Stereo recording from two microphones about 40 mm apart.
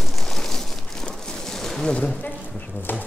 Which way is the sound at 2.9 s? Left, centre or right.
Left.